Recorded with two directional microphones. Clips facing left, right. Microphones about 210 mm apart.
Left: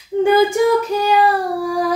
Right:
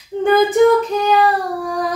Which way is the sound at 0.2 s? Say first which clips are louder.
Right 1 dB; 10° left (ahead or behind).